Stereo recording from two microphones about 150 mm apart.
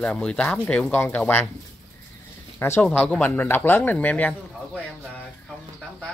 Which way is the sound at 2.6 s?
15° left (ahead or behind).